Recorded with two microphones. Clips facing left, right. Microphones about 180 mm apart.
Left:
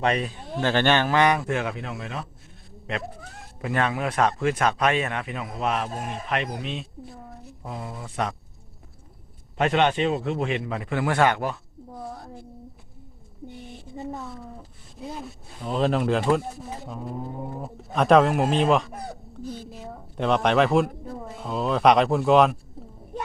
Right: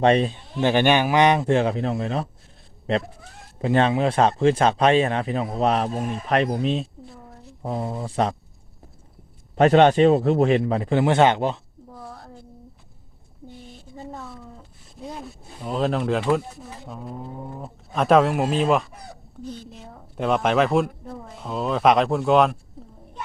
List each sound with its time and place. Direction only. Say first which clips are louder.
0.0 s speech: right 7 dB; 30° right (ahead or behind)
0.6 s speech: right 3 dB; 15° right (ahead or behind); by 2.2 s 35° right (ahead or behind)
3.6 s speech: right 6 dB; 30° right (ahead or behind)
9.6 s speech: right 7 dB; 35° right (ahead or behind)
15.0 s a woman's voice: even; centre (ahead or behind)